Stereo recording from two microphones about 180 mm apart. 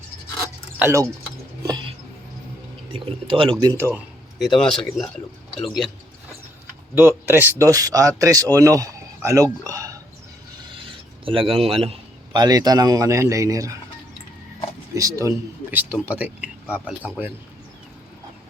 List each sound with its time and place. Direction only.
0.8 s speech: 15° right (ahead or behind)
1.6 s a sound: 25° right (ahead or behind)
2.9 s a man's voice: 30° right (ahead or behind)
3.6 s speech: 15° right (ahead or behind)
4.4 s speech: centre (ahead or behind)
6.9 s speech: 10° right (ahead or behind)
11.3 s a man's voice: 30° right (ahead or behind)
14.9 s speech: 20° right (ahead or behind)